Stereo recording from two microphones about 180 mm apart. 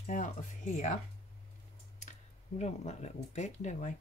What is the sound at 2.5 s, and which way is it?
Speech, 40° left (ahead or behind).